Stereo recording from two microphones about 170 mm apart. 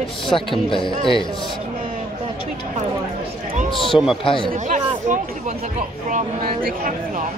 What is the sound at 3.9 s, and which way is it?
Speech, 5° right (ahead or behind).